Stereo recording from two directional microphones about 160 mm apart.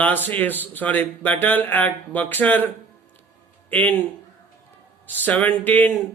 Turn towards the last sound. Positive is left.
turn(degrees=10)  # may be behind; listen again after turning